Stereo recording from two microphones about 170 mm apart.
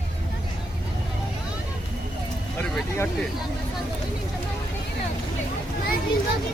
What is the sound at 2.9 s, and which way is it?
Speech, 10° left (ahead or behind).